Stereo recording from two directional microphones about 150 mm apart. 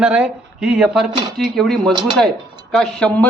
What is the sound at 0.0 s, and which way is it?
A man's voice, 10° right (ahead or behind).